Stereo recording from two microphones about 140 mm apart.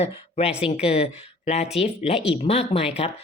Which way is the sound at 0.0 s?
45° left (ahead or behind).